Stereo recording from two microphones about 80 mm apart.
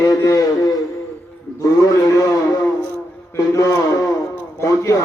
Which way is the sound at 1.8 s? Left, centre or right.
Left.